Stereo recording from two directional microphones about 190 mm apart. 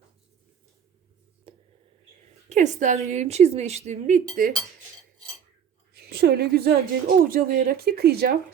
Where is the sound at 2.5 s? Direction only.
40° right (ahead or behind).